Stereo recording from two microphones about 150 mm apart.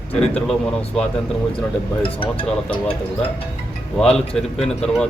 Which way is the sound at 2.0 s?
35° left (ahead or behind).